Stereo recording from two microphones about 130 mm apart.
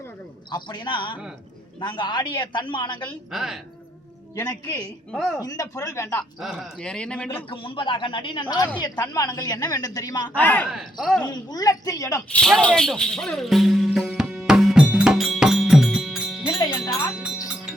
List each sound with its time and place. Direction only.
0.5 s speech: 35° left (ahead or behind)
3.3 s speech: 5° right (ahead or behind)
4.4 s speech: 30° left (ahead or behind)
5.1 s speech: centre (ahead or behind)
5.4 s a woman's voice: 30° left (ahead or behind)
6.4 s speech: centre (ahead or behind)
7.5 s a woman's voice: 40° left (ahead or behind)
10.3 s speech: 15° left (ahead or behind)
10.7 s speech: 5° right (ahead or behind)
11.3 s a woman's voice: 30° left (ahead or behind)
12.3 s music: 5° left (ahead or behind)
16.8 s music: 30° left (ahead or behind)